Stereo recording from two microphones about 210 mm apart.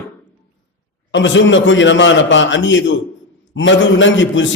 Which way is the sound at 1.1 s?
60° left (ahead or behind).